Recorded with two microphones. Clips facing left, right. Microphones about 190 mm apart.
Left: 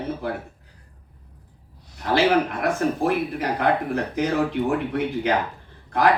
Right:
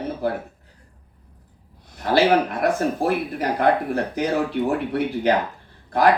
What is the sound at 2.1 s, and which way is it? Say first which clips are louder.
A man's voice: right 2 dB; 35° right (ahead or behind).